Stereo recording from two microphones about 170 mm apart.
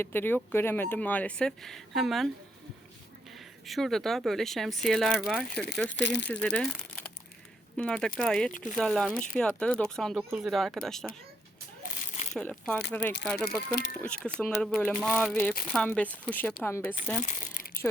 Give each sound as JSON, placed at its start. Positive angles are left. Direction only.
{"t": 0.0, "sound": "speech", "side_deg": 10}
{"t": 3.3, "sound": "speech", "side_deg": 0}
{"t": 6.0, "sound": "speech", "side_deg": 90}
{"t": 6.2, "sound": "speech", "side_deg": 10}
{"t": 7.8, "sound": "speech", "side_deg": 5}
{"t": 11.9, "sound": "a sound", "side_deg": 45}
{"t": 12.3, "sound": "speech", "side_deg": 5}
{"t": 17.2, "sound": "speech", "side_deg": 50}